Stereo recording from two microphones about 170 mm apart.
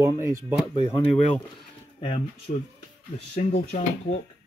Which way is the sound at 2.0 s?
40° left (ahead or behind).